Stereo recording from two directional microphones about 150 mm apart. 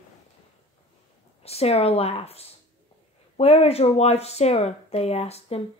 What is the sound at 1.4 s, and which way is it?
Speech, 45° left (ahead or behind).